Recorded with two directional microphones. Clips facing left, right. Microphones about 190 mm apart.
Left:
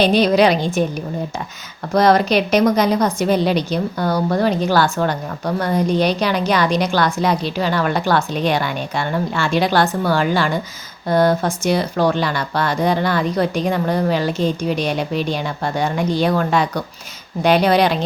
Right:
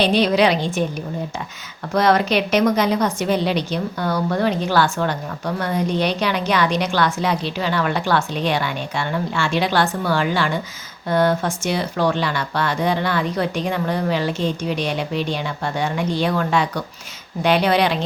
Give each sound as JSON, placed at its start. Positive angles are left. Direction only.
{"t": 0.0, "sound": "a woman's voice", "side_deg": 45}
{"t": 1.9, "sound": "speech", "side_deg": 40}